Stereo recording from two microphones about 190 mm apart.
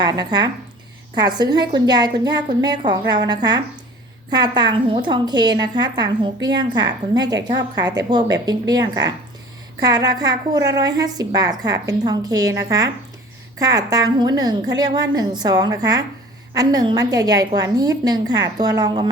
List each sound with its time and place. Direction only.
0.0 s a woman's voice: 20° right (ahead or behind)